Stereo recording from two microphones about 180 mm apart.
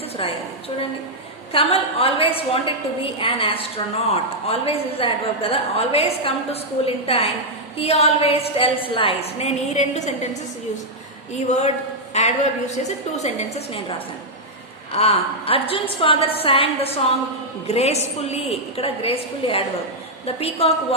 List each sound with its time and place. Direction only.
0.2 s a woman's voice: 30° left (ahead or behind)
1.5 s a woman's voice: 30° left (ahead or behind)
11.4 s a woman's voice: 40° left (ahead or behind)
14.9 s a woman's voice: 35° left (ahead or behind)